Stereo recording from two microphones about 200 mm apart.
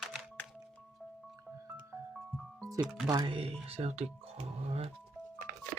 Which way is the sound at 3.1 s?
20° right (ahead or behind).